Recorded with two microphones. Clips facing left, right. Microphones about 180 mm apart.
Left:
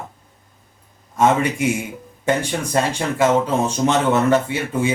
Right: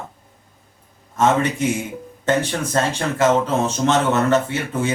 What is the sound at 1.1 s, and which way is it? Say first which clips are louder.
A man's voice: left 1 dB; 10° left (ahead or behind).